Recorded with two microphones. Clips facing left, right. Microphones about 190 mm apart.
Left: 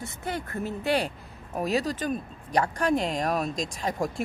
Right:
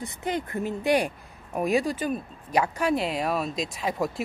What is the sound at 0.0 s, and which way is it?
A woman's voice, 15° right (ahead or behind).